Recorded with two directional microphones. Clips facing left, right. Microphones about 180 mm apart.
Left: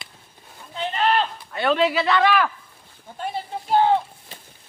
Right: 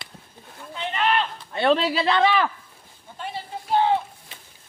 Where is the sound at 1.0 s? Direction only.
35° left (ahead or behind).